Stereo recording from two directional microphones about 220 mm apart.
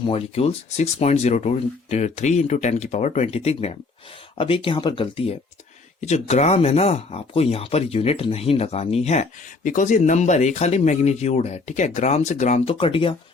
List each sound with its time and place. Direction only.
0.0 s speech: 25° left (ahead or behind)